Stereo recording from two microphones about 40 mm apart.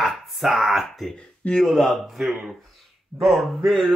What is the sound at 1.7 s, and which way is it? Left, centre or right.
Speech, centre.